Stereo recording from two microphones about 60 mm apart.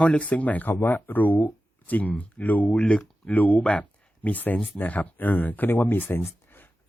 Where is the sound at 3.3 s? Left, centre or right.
Left.